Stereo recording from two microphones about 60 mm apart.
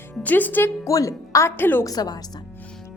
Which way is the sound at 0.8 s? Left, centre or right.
Left.